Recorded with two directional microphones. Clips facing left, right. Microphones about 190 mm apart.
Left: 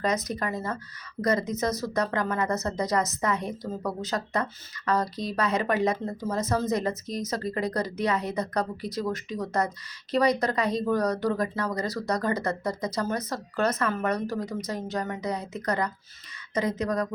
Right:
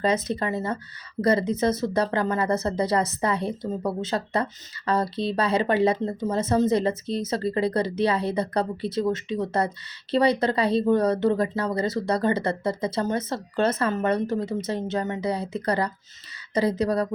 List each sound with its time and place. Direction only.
0.0 s speech: 30° right (ahead or behind)